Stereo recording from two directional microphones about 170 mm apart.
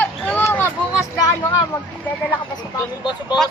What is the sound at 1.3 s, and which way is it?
Speech, 15° left (ahead or behind).